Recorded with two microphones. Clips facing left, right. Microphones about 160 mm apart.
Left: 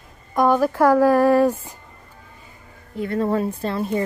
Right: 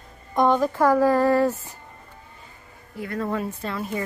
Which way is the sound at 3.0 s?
30° left (ahead or behind).